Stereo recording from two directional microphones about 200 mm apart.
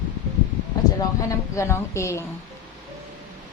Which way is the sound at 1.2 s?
15° left (ahead or behind).